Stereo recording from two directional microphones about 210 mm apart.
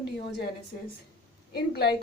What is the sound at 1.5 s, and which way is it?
Speech, 50° left (ahead or behind).